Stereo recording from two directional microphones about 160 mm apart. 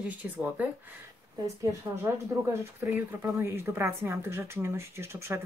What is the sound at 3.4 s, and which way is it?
Speech, 15° right (ahead or behind).